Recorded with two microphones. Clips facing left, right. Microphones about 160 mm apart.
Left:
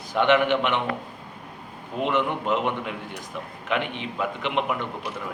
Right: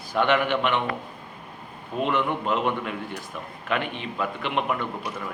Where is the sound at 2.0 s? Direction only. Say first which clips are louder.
Even; 20° left (ahead or behind).